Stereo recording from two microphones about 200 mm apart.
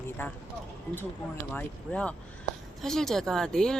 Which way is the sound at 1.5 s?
5° left (ahead or behind).